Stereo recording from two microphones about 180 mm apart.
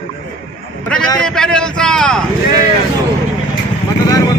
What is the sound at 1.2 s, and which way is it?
Speech, 5° left (ahead or behind).